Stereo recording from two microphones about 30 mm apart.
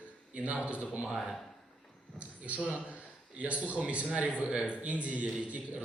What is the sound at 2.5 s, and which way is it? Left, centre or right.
A man's voice, right.